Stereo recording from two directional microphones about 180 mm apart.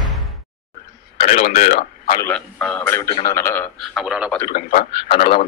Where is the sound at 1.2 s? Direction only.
45° left (ahead or behind).